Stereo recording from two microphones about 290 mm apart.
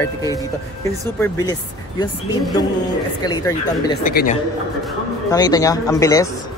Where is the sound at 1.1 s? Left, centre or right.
Centre.